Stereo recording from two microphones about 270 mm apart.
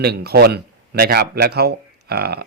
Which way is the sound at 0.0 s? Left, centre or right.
Right.